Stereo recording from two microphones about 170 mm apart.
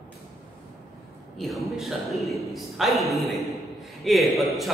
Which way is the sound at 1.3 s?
Centre (ahead or behind).